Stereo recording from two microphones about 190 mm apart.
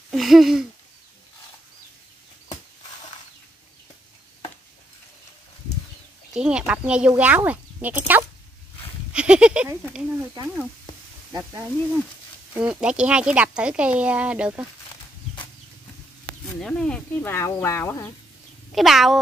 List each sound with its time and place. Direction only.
0.1 s a sound: centre (ahead or behind)
6.3 s speech: 5° right (ahead or behind)
11.3 s speech: 15° right (ahead or behind)
12.5 s speech: 5° right (ahead or behind)
16.4 s speech: 5° left (ahead or behind)
18.8 s speech: centre (ahead or behind)